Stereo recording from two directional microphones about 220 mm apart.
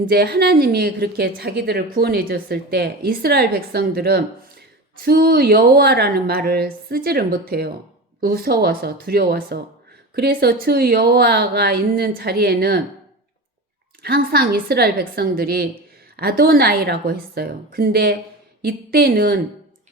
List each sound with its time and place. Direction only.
0.0 s a woman's voice: 45° right (ahead or behind)
14.0 s a woman's voice: 45° right (ahead or behind)